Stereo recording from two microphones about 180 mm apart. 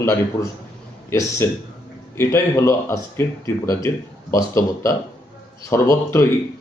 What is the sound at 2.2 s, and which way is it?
Speech, 15° left (ahead or behind).